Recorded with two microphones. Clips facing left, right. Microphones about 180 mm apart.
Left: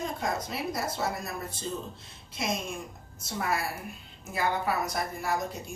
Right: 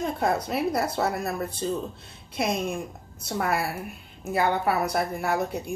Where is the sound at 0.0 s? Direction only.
60° right (ahead or behind).